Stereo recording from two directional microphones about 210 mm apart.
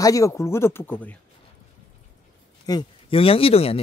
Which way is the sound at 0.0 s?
15° left (ahead or behind).